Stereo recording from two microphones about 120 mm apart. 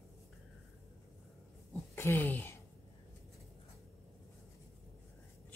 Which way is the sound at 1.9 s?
20° left (ahead or behind).